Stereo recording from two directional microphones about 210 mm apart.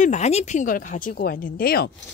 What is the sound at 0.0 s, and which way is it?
Speech, 35° left (ahead or behind).